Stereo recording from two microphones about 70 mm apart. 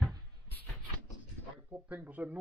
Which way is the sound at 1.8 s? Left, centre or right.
Right.